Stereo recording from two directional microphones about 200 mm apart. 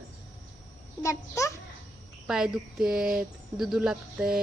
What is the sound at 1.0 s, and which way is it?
Speech, 15° left (ahead or behind).